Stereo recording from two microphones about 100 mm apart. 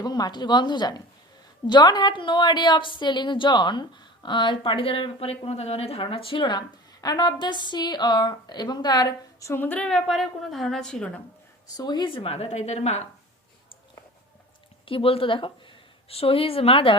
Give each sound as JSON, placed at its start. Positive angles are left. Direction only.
{"t": 0.0, "sound": "a woman's voice", "side_deg": 45}
{"t": 9.5, "sound": "a woman's voice", "side_deg": 20}
{"t": 11.8, "sound": "a woman's voice", "side_deg": 45}
{"t": 12.1, "sound": "a woman's voice", "side_deg": 70}
{"t": 14.8, "sound": "a woman's voice", "side_deg": 65}